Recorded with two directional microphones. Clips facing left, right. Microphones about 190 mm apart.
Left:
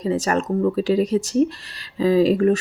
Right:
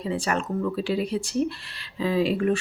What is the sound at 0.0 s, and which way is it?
Speech, 40° left (ahead or behind).